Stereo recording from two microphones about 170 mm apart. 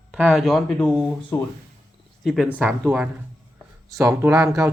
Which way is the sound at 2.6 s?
15° right (ahead or behind).